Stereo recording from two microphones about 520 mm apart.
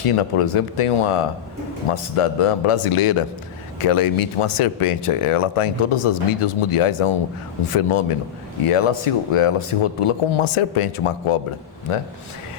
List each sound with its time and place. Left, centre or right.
0.0 s speech: left